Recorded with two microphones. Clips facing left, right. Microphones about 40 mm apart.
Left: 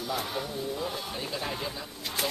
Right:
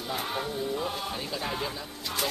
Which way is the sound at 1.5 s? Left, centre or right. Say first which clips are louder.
Right 2 dB; centre.